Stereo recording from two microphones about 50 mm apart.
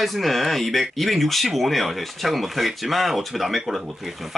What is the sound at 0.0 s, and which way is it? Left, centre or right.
Speech, centre.